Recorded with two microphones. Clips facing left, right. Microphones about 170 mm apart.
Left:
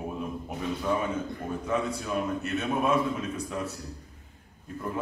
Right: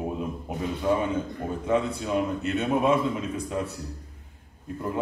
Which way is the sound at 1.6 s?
25° right (ahead or behind).